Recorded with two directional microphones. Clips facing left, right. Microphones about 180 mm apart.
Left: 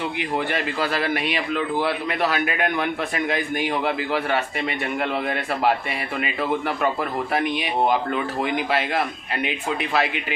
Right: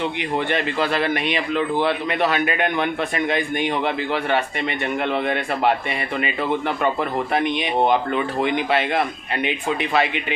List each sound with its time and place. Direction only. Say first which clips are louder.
0.2 s a man's voice: even; 5° left (ahead or behind)
7.3 s a man's voice: right 2 dB; 5° left (ahead or behind)